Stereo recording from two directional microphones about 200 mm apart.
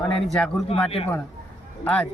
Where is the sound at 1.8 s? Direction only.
5° left (ahead or behind).